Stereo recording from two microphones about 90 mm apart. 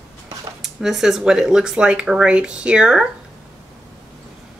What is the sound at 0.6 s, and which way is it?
Speech, 5° right (ahead or behind).